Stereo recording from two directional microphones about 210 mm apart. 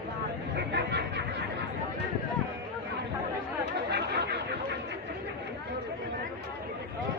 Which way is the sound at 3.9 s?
55° right (ahead or behind).